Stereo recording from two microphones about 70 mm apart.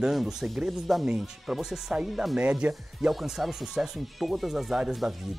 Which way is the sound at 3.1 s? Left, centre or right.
Centre.